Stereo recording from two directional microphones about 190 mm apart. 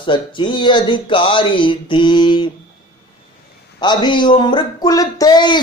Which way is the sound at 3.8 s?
25° left (ahead or behind).